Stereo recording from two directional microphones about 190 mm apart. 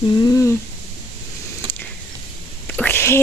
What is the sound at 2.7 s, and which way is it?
Whispering, 5° left (ahead or behind).